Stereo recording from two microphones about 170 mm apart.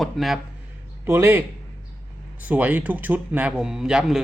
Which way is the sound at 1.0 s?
10° right (ahead or behind).